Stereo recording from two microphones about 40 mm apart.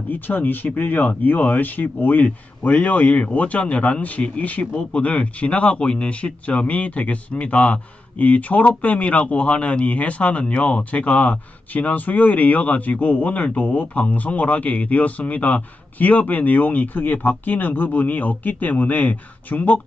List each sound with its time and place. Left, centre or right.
0.1 s speech: left